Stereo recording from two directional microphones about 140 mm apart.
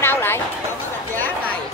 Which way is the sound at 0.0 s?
15° left (ahead or behind).